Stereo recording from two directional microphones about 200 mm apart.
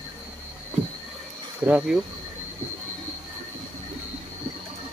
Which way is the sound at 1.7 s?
5° right (ahead or behind).